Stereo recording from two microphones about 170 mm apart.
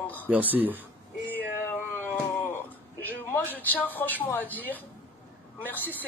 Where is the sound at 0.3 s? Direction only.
10° right (ahead or behind).